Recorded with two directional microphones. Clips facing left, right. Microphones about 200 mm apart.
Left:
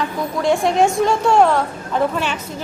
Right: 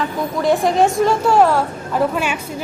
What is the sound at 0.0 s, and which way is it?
Speech, centre (ahead or behind).